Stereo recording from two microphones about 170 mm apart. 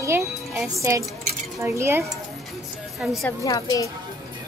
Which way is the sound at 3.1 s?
20° left (ahead or behind).